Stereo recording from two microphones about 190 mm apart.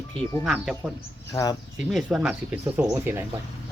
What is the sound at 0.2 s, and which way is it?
Speech, 5° right (ahead or behind).